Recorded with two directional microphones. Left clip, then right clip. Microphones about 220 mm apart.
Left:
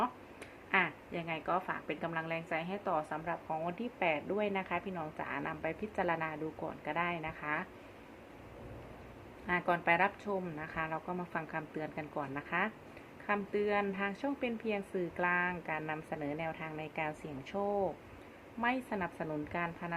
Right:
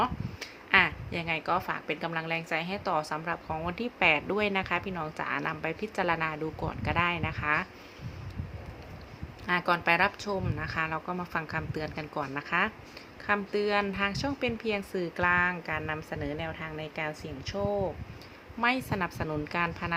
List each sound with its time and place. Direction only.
0.7 s a woman's voice: 20° right (ahead or behind)
9.5 s a woman's voice: 15° right (ahead or behind)